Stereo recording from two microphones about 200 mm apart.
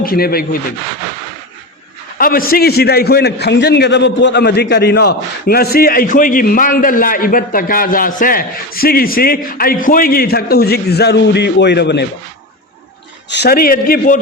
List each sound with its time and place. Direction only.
0.0 s a man's voice: 50° left (ahead or behind)
2.1 s a man's voice: 45° left (ahead or behind)
13.3 s a man's voice: 50° left (ahead or behind)